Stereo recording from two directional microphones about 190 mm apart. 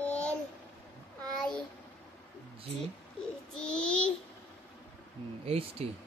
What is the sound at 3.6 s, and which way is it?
Child singing, 5° left (ahead or behind).